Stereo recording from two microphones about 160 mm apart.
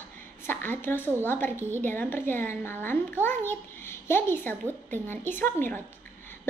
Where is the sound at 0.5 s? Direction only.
10° left (ahead or behind).